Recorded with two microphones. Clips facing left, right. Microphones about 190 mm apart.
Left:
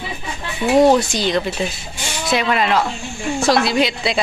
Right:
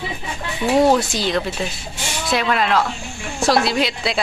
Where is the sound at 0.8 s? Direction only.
Centre (ahead or behind).